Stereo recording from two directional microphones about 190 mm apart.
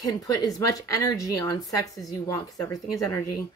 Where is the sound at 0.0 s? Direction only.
20° left (ahead or behind).